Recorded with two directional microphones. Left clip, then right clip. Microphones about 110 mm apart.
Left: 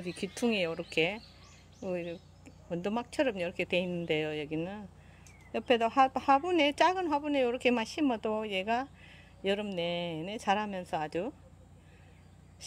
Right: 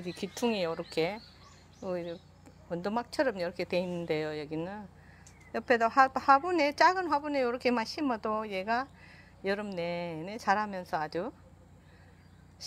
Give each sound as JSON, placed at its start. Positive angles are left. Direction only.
{"t": 0.0, "sound": "speech", "side_deg": 20}
{"t": 5.5, "sound": "speech", "side_deg": 45}
{"t": 5.9, "sound": "a woman's voice", "side_deg": 30}
{"t": 10.4, "sound": "a woman's voice", "side_deg": 30}